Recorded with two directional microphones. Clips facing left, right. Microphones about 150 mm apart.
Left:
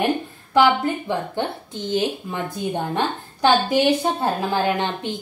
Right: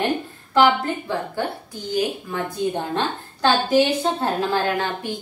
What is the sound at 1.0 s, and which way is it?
A woman's voice, 25° left (ahead or behind).